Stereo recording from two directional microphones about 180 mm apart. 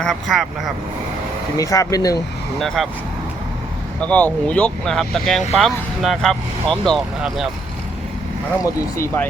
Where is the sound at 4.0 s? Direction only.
10° left (ahead or behind).